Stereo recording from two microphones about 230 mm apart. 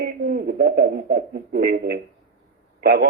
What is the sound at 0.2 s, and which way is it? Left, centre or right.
Speech, right.